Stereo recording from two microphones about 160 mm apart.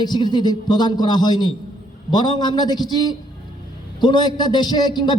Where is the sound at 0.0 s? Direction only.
25° left (ahead or behind).